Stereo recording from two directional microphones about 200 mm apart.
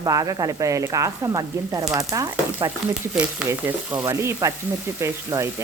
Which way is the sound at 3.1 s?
5° right (ahead or behind).